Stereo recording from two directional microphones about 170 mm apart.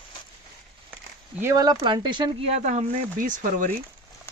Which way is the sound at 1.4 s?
20° right (ahead or behind).